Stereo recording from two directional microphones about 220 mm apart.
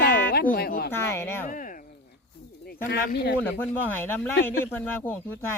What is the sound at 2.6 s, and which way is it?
Speech, 45° left (ahead or behind).